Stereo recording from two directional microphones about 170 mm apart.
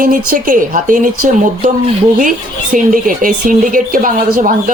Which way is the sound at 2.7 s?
50° right (ahead or behind).